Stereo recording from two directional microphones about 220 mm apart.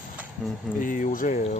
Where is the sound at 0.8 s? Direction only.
35° left (ahead or behind).